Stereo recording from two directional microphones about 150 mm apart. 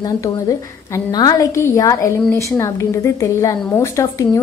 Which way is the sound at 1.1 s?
25° left (ahead or behind).